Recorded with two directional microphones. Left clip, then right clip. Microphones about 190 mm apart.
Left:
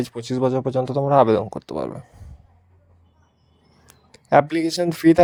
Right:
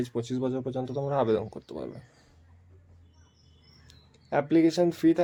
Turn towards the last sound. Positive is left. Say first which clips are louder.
# left 6 dB
turn(degrees=40)  # may be behind; listen again after turning